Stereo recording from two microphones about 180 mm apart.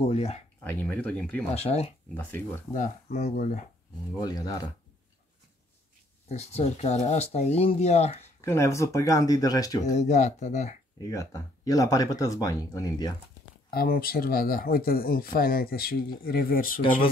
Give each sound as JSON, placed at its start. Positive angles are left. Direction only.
{"t": 0.0, "sound": "speech", "side_deg": 35}
{"t": 0.7, "sound": "speech", "side_deg": 10}
{"t": 1.5, "sound": "speech", "side_deg": 35}
{"t": 2.1, "sound": "speech", "side_deg": 10}
{"t": 2.7, "sound": "speech", "side_deg": 40}
{"t": 4.2, "sound": "speech", "side_deg": 20}
{"t": 6.2, "sound": "speech", "side_deg": 35}
{"t": 8.4, "sound": "speech", "side_deg": 15}
{"t": 9.9, "sound": "speech", "side_deg": 40}
{"t": 11.0, "sound": "speech", "side_deg": 20}
{"t": 13.7, "sound": "speech", "side_deg": 55}